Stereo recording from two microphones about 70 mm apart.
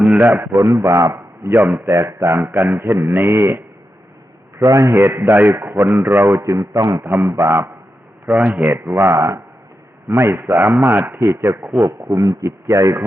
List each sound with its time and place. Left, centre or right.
0.0 s a man's voice: right
1.5 s a man's voice: right
1.9 s a man's voice: right
2.2 s a man's voice: right
4.6 s a man's voice: right
4.9 s a man's voice: right
7.0 s a man's voice: right
7.3 s a man's voice: right
8.3 s a man's voice: right